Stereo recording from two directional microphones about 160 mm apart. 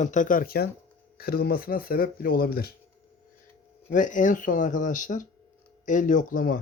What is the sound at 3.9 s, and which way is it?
Speech, 55° left (ahead or behind).